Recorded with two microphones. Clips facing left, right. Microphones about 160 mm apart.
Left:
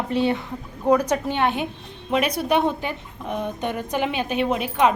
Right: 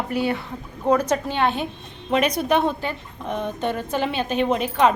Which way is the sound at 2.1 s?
5° left (ahead or behind).